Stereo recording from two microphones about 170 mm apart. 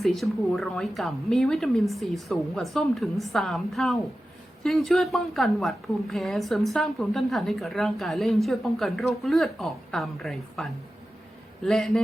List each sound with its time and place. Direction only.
0.0 s a woman's voice: centre (ahead or behind)